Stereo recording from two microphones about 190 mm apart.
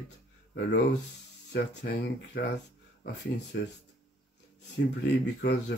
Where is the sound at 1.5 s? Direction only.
60° left (ahead or behind).